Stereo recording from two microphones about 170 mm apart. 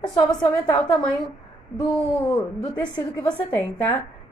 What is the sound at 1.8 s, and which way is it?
A woman's voice, 20° left (ahead or behind).